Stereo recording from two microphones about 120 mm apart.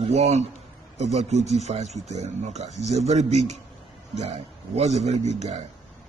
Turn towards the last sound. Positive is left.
turn(degrees=-70)  # may be behind; listen again after turning